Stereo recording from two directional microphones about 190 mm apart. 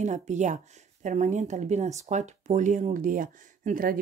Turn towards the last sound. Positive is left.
turn(degrees=-45)  # may be behind; listen again after turning